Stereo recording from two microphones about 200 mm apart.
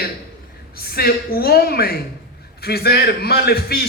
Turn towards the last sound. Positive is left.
turn(degrees=50)  # may be behind; listen again after turning